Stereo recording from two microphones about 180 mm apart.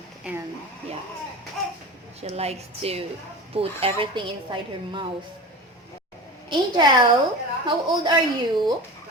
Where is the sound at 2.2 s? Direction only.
35° right (ahead or behind).